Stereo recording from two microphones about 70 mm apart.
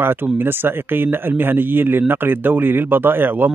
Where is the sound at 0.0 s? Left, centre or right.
Right.